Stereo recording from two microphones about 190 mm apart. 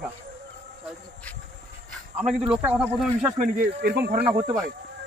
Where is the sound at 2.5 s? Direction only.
10° right (ahead or behind).